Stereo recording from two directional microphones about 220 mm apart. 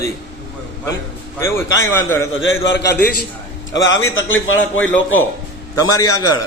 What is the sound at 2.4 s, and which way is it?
A man's voice, 60° left (ahead or behind).